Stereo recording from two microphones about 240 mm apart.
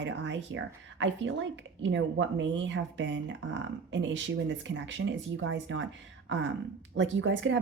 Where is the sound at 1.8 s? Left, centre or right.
Right.